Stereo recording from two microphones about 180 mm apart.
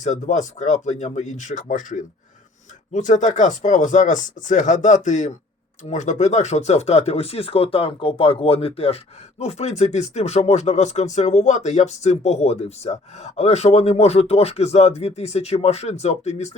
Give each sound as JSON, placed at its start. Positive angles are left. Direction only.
{"t": 0.0, "sound": "speech", "side_deg": 40}